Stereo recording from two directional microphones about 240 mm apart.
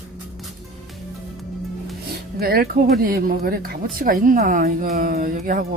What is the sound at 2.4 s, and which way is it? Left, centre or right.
Music, right.